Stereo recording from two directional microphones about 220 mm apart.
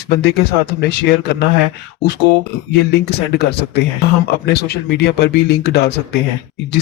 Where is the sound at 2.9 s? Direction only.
45° left (ahead or behind).